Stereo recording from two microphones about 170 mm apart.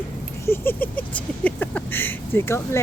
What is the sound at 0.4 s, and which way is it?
Speech, 15° left (ahead or behind).